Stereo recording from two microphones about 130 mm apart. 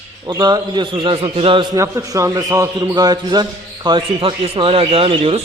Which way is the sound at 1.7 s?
25° right (ahead or behind).